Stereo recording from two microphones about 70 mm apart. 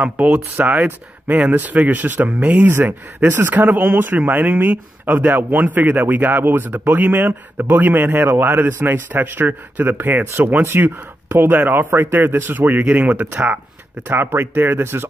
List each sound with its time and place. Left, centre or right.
0.0 s speech: centre